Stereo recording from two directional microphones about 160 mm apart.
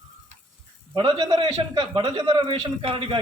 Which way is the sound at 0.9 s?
30° right (ahead or behind).